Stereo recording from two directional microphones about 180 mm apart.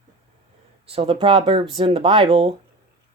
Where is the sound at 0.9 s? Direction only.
30° right (ahead or behind).